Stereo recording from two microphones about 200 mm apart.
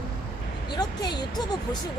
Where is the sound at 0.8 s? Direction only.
20° left (ahead or behind).